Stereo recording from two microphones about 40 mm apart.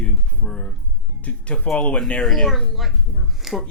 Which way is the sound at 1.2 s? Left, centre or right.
Left.